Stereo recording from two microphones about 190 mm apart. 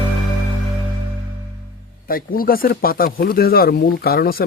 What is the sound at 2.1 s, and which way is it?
Speech, 50° left (ahead or behind).